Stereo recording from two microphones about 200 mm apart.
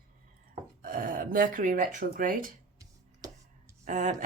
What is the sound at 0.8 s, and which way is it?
A woman's voice, 45° right (ahead or behind).